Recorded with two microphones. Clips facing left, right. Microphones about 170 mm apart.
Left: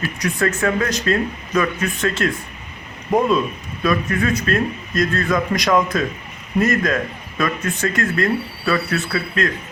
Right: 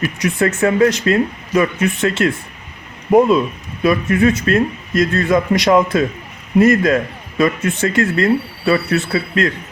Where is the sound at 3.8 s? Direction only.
25° right (ahead or behind).